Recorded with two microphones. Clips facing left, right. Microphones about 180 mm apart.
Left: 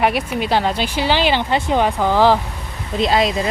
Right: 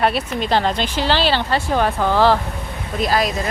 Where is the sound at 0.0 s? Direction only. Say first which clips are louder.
Left 1 dB; 10° left (ahead or behind).